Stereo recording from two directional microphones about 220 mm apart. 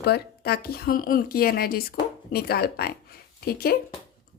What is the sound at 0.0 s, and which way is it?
A woman's voice, 45° left (ahead or behind).